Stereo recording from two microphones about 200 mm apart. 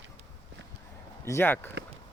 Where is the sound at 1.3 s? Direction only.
10° left (ahead or behind).